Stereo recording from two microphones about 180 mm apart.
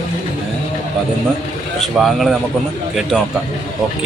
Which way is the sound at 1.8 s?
Centre (ahead or behind).